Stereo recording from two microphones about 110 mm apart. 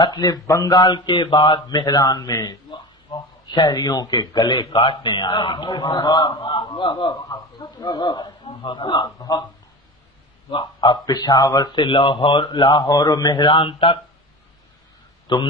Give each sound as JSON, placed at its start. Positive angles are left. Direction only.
{"t": 0.0, "sound": "speech", "side_deg": 35}
{"t": 10.5, "sound": "speech", "side_deg": 45}
{"t": 15.3, "sound": "speech", "side_deg": 45}